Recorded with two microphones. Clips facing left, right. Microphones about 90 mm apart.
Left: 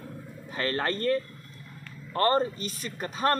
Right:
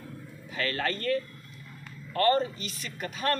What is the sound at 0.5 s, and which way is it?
A man's voice, 35° left (ahead or behind).